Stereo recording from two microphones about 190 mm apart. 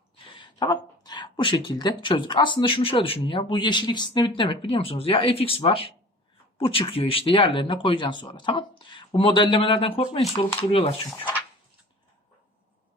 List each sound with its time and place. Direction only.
0.3 s speech: 25° left (ahead or behind)